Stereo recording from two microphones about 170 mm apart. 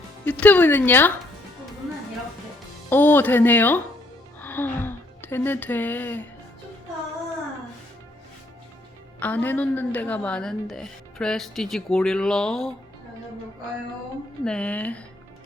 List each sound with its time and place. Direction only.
0.3 s speech: 10° left (ahead or behind)
2.9 s speech: 10° left (ahead or behind)
9.2 s a woman's voice: 10° left (ahead or behind)
14.4 s speech: 5° left (ahead or behind)